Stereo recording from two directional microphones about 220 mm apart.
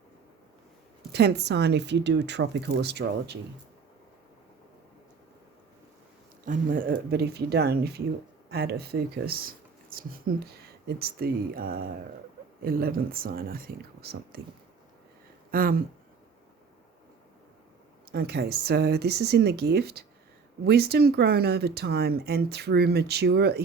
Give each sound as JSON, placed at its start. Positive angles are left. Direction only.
{"t": 1.1, "sound": "speech", "side_deg": -50}
{"t": 6.4, "sound": "speech", "side_deg": -35}
{"t": 15.5, "sound": "speech", "side_deg": -40}
{"t": 18.1, "sound": "speech", "side_deg": -45}